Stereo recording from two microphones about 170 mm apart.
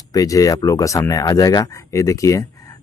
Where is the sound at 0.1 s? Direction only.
20° left (ahead or behind).